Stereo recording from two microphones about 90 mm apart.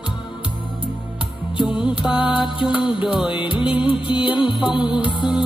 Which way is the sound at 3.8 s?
65° left (ahead or behind).